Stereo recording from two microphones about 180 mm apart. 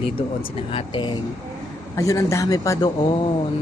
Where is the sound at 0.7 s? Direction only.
25° left (ahead or behind).